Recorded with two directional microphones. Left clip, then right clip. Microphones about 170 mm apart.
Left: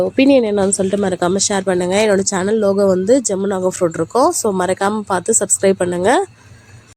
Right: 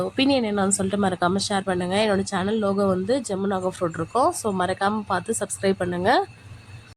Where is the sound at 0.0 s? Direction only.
20° left (ahead or behind).